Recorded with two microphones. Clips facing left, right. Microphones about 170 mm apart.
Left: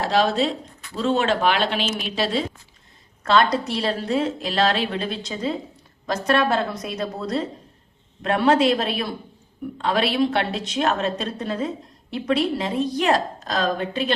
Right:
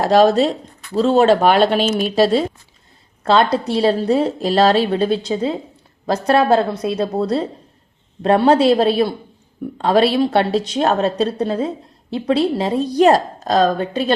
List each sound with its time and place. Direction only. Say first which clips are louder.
0.0 s speech: right 8 dB; 45° right (ahead or behind)
3.2 s speech: right 4 dB; 30° right (ahead or behind)